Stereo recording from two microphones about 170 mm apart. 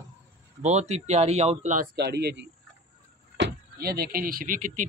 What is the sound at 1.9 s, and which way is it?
A man's voice, 75° right (ahead or behind).